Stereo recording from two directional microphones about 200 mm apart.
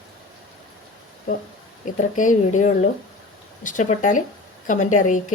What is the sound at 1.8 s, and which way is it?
A woman's voice, 40° left (ahead or behind).